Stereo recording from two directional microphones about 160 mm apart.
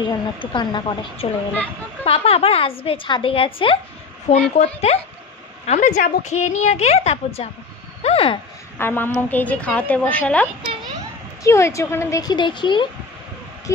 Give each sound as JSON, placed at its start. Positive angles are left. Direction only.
{"t": 0.0, "sound": "a woman's voice", "side_deg": 30}
{"t": 4.3, "sound": "a woman's voice", "side_deg": 45}
{"t": 8.7, "sound": "a woman's voice", "side_deg": 15}